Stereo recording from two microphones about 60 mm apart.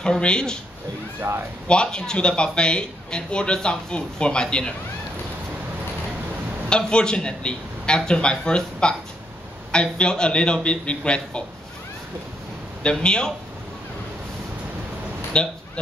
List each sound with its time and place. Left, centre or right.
0.0 s speech: centre
1.7 s speech: centre
6.7 s speech: centre
13.0 s speech: centre
15.3 s speech: centre